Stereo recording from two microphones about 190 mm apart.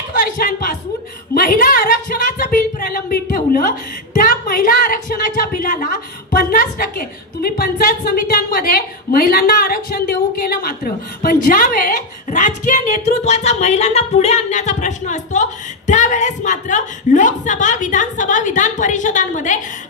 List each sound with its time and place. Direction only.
0.1 s music: 50° left (ahead or behind)
1.3 s a woman's voice: 50° left (ahead or behind)